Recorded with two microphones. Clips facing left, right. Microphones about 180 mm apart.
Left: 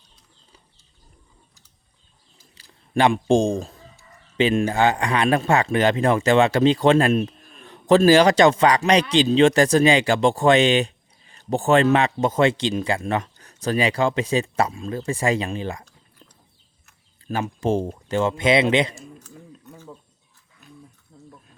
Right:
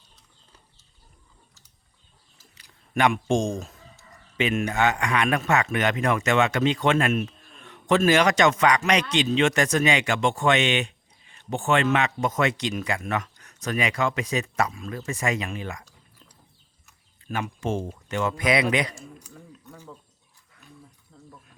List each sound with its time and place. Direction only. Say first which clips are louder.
2.6 s a man's voice: left 4 dB; 30° left (ahead or behind)
17.2 s speech: left 5 dB; 35° left (ahead or behind)
21.1 s speech: left 3 dB; 15° left (ahead or behind)